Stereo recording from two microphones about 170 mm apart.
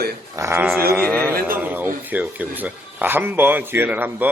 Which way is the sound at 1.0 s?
10° left (ahead or behind).